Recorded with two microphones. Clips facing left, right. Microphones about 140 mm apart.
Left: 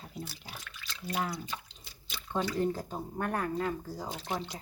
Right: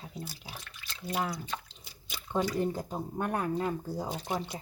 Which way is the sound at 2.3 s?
10° right (ahead or behind).